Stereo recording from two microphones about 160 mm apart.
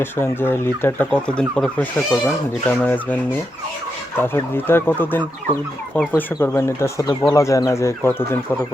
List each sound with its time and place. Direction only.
0.0 s speech: 15° left (ahead or behind)
4.2 s speech: 15° left (ahead or behind)